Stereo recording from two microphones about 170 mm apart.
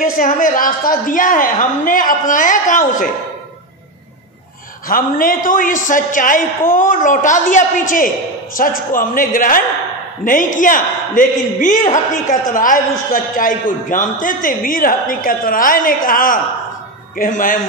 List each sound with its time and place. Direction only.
0.0 s a man's voice: 55° left (ahead or behind)
4.8 s a man's voice: 55° left (ahead or behind)